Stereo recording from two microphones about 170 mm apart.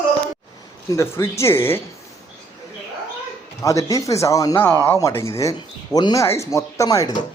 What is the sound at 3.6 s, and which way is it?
Speech, 20° left (ahead or behind).